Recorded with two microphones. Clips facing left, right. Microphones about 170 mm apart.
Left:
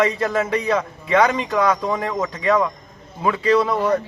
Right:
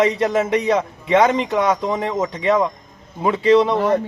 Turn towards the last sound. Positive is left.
turn(degrees=-25)  # may be behind; listen again after turning